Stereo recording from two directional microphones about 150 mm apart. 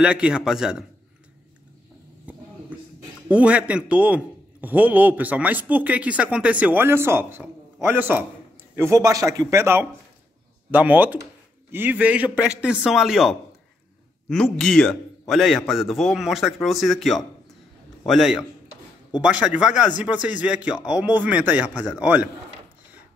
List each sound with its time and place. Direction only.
0.0 s a man's voice: 5° right (ahead or behind)
3.3 s a man's voice: 10° right (ahead or behind)